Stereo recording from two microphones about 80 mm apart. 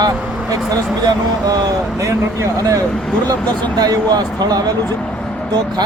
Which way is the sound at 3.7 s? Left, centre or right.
Right.